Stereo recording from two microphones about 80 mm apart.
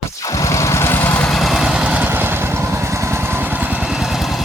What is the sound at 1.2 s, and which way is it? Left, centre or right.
Vehicle, centre.